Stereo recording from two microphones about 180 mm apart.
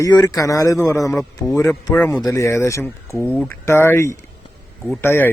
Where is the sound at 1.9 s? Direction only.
5° left (ahead or behind).